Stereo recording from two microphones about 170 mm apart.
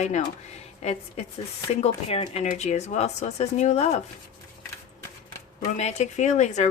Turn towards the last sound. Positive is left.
turn(degrees=45)  # may be behind; listen again after turning